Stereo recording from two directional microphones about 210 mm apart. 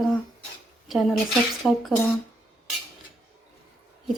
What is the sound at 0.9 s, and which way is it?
A woman's voice, centre (ahead or behind).